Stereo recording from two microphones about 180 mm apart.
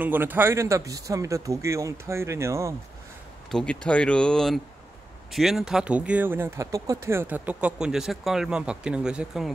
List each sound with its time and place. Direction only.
0.0 s speech: 10° right (ahead or behind)
3.5 s speech: 5° left (ahead or behind)